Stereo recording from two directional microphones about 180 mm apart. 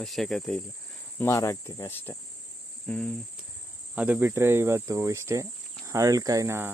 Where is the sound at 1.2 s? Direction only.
15° left (ahead or behind).